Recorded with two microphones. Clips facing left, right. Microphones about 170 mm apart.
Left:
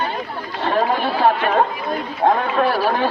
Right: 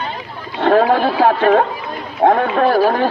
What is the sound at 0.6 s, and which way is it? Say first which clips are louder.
Speech: right 7 dB; 60° right (ahead or behind).